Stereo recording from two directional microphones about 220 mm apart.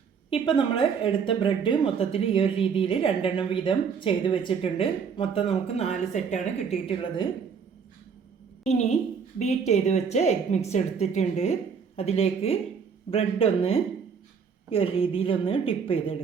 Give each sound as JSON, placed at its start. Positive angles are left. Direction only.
{"t": 0.3, "sound": "speech", "side_deg": 25}
{"t": 8.6, "sound": "a woman's voice", "side_deg": 30}